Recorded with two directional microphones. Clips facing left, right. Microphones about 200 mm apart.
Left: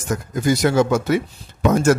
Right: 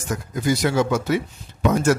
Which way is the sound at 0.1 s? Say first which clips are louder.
Left 3 dB; 45° left (ahead or behind).